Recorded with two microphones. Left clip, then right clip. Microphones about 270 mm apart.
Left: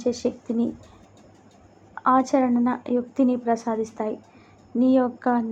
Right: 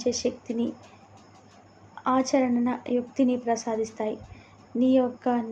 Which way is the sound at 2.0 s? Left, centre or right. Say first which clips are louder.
Left 4 dB; centre.